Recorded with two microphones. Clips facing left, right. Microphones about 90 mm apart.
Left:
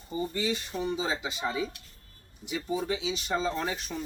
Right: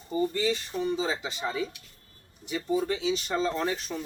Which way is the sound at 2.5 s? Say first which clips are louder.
Right 3 dB; 10° left (ahead or behind).